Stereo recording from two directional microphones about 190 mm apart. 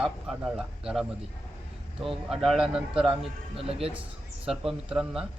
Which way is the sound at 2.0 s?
Centre (ahead or behind).